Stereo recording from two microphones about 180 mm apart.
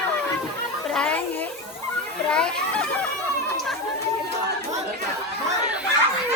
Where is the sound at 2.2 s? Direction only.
5° left (ahead or behind).